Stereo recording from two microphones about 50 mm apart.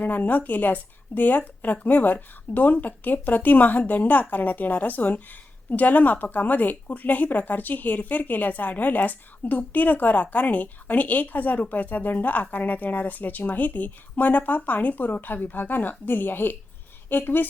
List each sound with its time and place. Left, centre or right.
0.0 s speech: left